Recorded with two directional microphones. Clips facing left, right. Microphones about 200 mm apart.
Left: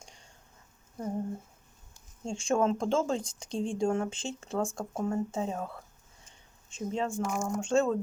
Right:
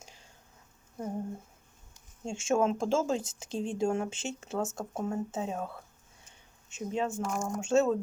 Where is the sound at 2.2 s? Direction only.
5° right (ahead or behind).